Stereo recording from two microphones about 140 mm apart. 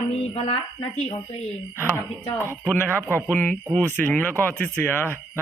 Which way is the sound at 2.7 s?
15° left (ahead or behind).